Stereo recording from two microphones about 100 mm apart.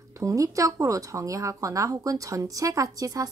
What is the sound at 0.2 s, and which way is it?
Speech, 35° right (ahead or behind).